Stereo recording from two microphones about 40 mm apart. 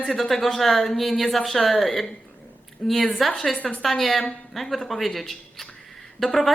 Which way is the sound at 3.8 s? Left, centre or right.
Centre.